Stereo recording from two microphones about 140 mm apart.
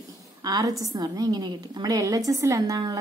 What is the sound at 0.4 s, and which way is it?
A woman's voice, 25° right (ahead or behind).